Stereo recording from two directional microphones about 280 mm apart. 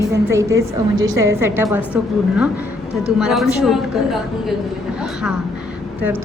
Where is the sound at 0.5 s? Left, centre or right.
Right.